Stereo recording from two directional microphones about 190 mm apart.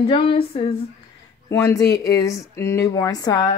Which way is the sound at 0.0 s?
30° left (ahead or behind).